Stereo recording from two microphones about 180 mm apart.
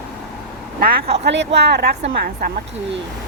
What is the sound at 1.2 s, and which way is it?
Speech, 75° right (ahead or behind).